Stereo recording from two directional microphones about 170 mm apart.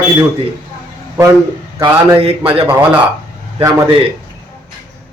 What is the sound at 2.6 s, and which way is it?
Speech, 10° right (ahead or behind).